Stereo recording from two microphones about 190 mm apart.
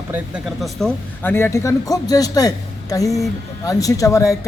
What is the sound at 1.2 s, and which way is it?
Speech, 10° left (ahead or behind).